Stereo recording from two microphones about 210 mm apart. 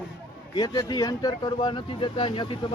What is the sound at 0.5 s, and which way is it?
Speech, 20° left (ahead or behind).